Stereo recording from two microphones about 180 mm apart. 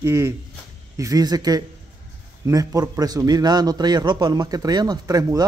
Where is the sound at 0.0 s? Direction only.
15° right (ahead or behind).